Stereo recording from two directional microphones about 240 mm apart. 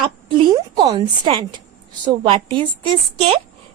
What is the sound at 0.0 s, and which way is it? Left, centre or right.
A woman's voice, centre.